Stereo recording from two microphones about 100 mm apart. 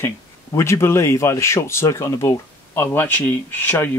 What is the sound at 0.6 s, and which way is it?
Speech, 25° left (ahead or behind).